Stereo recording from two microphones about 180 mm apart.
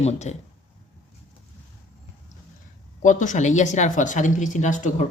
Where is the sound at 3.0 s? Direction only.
45° left (ahead or behind).